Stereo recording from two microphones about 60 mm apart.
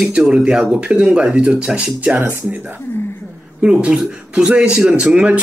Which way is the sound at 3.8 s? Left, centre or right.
Centre.